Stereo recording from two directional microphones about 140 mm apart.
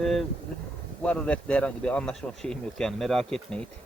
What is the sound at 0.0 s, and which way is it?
A man's voice, centre (ahead or behind).